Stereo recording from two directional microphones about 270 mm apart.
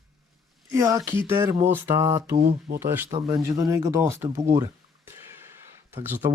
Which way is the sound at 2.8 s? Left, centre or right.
Centre.